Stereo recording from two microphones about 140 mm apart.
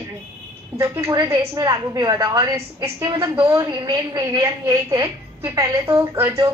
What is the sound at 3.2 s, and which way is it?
Speech, 20° right (ahead or behind).